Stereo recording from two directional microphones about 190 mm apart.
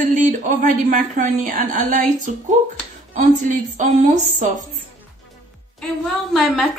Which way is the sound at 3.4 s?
40° right (ahead or behind).